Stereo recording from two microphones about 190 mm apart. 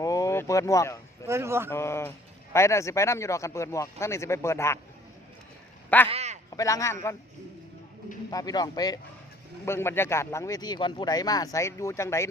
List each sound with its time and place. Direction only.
0.0 s a sound: 20° left (ahead or behind)
1.3 s a man's voice: 15° right (ahead or behind)
1.7 s speech: 15° left (ahead or behind)
6.1 s a sound: 35° right (ahead or behind)
6.6 s speech: 15° left (ahead or behind)
8.3 s a man's voice: 20° left (ahead or behind)